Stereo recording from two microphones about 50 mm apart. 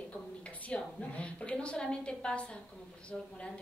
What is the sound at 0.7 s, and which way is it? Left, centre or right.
A woman's voice, left.